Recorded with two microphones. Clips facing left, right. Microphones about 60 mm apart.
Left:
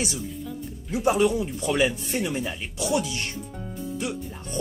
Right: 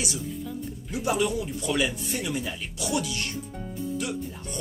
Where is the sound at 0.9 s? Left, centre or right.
Left.